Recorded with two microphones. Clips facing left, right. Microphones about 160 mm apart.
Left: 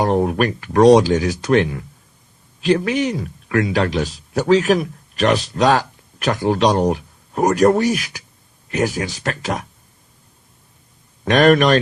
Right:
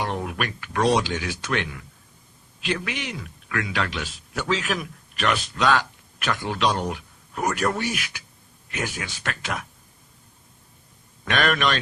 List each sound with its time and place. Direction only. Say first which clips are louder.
0.0 s a man's voice: left 11 dB; 40° left (ahead or behind)
11.3 s speech: left 10 dB; 40° left (ahead or behind)